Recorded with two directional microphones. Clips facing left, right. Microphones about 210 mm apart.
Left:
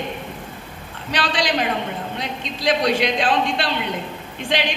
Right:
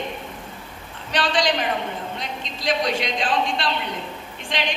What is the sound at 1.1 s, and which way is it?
A woman's voice, 65° left (ahead or behind).